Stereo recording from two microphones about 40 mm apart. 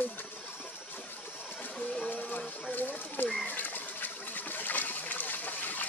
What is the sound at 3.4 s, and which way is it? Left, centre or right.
Water, left.